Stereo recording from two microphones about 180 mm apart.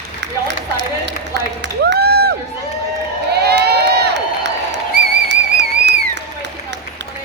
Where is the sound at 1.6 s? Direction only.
70° right (ahead or behind).